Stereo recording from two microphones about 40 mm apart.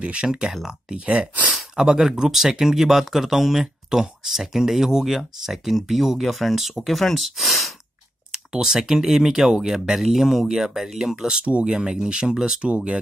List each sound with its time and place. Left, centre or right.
0.0 s speech: right
1.0 s speech: right
1.8 s speech: centre
8.5 s speech: centre
9.9 s speech: centre
11.4 s speech: right
11.7 s speech: centre
12.6 s speech: right